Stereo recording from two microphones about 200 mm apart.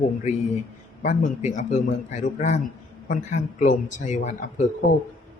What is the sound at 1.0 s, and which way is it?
Speech, 40° left (ahead or behind).